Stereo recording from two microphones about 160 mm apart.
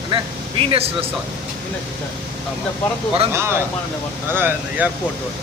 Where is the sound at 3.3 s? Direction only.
15° right (ahead or behind).